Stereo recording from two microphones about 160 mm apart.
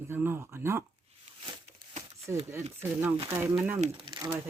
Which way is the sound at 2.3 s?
15° right (ahead or behind).